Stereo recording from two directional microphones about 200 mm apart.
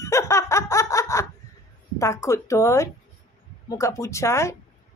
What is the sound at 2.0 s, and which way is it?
Speech, 15° left (ahead or behind).